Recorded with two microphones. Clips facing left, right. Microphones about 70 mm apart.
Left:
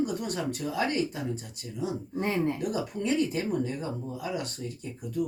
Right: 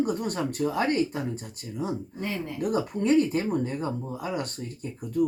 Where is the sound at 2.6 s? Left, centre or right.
Right.